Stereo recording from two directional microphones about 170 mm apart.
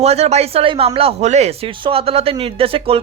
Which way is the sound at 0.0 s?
40° right (ahead or behind).